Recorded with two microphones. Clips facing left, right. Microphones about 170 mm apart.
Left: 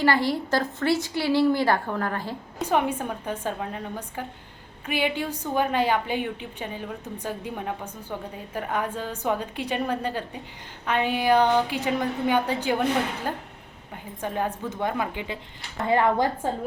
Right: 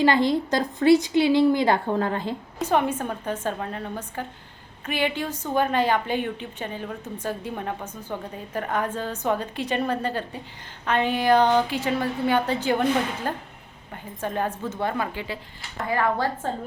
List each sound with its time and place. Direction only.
0.0 s a woman's voice: 20° right (ahead or behind)
2.6 s a woman's voice: 10° left (ahead or behind)